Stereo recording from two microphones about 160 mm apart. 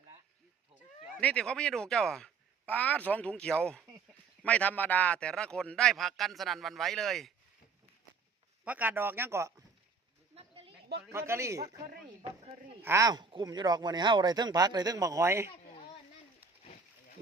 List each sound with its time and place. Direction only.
1.2 s a man's voice: 5° left (ahead or behind)
8.6 s a man's voice: 10° right (ahead or behind)
11.1 s a man's voice: 15° right (ahead or behind)
12.8 s speech: 20° right (ahead or behind)